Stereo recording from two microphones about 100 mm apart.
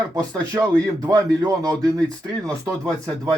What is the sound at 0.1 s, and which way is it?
Speech, 35° right (ahead or behind).